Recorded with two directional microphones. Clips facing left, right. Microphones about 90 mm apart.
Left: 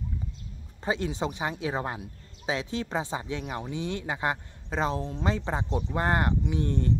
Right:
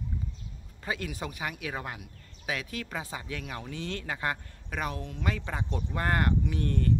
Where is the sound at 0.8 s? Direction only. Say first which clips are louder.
Left 6 dB; 25° left (ahead or behind).